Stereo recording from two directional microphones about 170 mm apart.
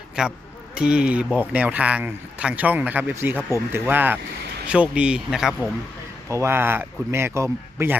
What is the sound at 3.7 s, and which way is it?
A man's voice, 10° right (ahead or behind).